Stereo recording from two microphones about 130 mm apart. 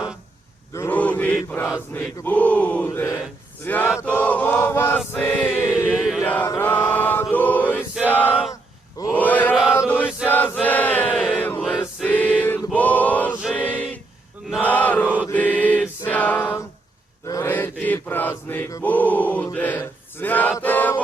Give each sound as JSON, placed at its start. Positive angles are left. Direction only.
{"t": 0.9, "sound": "chant", "side_deg": 10}
{"t": 1.9, "sound": "choir", "side_deg": 15}
{"t": 5.9, "sound": "chant", "side_deg": -5}
{"t": 6.2, "sound": "mantra", "side_deg": 15}
{"t": 6.5, "sound": "choir", "side_deg": 15}
{"t": 8.0, "sound": "male singing", "side_deg": 15}
{"t": 9.1, "sound": "chant", "side_deg": 15}
{"t": 12.0, "sound": "choir", "side_deg": 15}
{"t": 14.6, "sound": "chant", "side_deg": 10}
{"t": 15.3, "sound": "choir", "side_deg": 10}
{"t": 17.2, "sound": "chant", "side_deg": 25}
{"t": 17.5, "sound": "mantra", "side_deg": 15}
{"t": 19.5, "sound": "speech", "side_deg": 15}
{"t": 20.6, "sound": "choir", "side_deg": 15}